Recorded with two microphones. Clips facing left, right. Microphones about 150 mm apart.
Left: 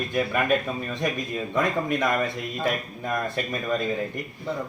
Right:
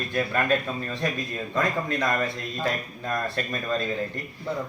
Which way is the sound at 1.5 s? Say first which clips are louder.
Left 2 dB; 20° left (ahead or behind).